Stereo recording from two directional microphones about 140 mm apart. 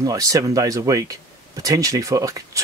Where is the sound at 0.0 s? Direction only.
25° right (ahead or behind).